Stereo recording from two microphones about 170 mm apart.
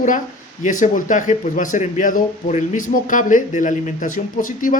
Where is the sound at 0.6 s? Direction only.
50° left (ahead or behind).